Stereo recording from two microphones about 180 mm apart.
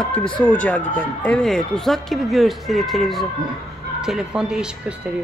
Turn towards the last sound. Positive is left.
turn(degrees=-5)  # may be behind; listen again after turning